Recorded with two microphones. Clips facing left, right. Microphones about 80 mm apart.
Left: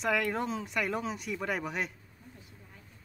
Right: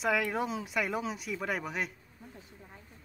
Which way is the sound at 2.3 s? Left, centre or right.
Right.